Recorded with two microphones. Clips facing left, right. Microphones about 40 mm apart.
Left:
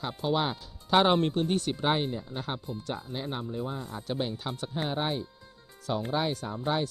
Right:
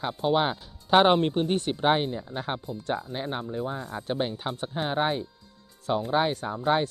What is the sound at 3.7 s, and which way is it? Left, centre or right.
Speech, right.